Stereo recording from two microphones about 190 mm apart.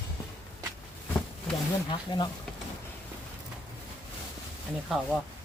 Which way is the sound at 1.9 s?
25° left (ahead or behind).